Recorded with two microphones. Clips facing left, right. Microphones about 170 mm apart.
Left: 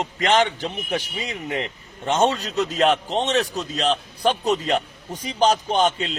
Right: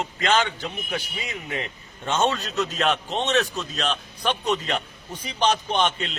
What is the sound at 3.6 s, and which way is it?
A man's voice, 30° left (ahead or behind).